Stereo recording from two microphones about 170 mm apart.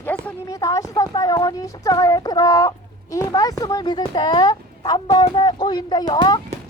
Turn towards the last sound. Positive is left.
turn(degrees=25)  # may be behind; listen again after turning